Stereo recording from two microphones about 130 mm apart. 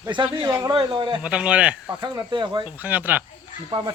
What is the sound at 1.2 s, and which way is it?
Speech, 10° right (ahead or behind).